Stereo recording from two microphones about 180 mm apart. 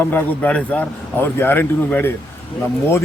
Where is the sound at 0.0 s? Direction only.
10° left (ahead or behind).